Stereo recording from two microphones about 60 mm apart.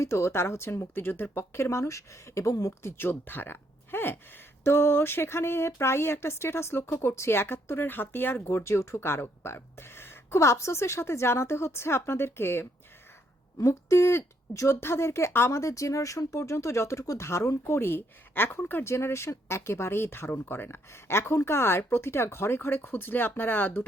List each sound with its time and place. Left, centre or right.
0.0 s speech: left
2.8 s speech: left
13.6 s a woman's voice: left
17.7 s a woman's voice: left
18.9 s speech: left